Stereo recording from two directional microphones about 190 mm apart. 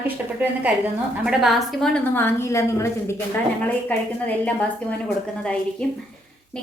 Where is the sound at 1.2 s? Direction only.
Centre (ahead or behind); by 2.9 s 15° left (ahead or behind).